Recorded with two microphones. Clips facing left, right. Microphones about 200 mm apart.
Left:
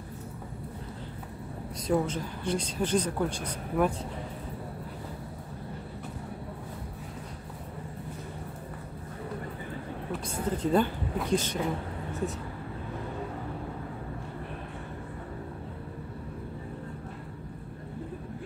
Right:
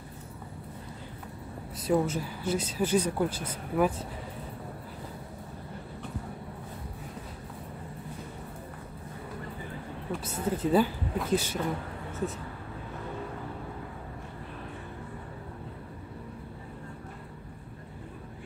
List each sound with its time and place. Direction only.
1.9 s speech: 5° right (ahead or behind)
10.2 s a woman's voice: 5° right (ahead or behind)